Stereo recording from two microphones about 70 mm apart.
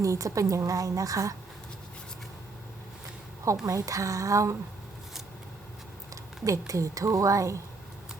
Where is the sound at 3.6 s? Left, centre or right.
Right.